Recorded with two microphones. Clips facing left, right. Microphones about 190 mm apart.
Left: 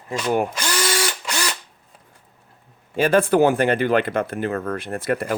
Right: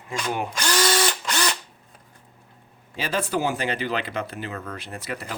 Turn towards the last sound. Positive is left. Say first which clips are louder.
# left 10 dB
turn(degrees=55)  # may be behind; listen again after turning